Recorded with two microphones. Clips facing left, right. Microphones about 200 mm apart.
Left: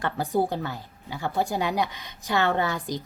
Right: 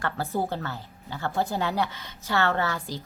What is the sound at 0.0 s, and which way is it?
A woman's voice, 15° left (ahead or behind).